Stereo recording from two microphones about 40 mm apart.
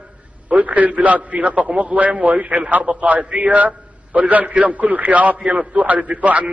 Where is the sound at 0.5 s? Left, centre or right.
Right.